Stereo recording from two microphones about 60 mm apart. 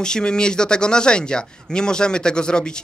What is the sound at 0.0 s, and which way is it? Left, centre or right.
Speech, centre.